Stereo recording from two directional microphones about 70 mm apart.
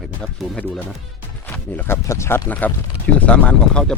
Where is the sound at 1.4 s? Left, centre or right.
Left.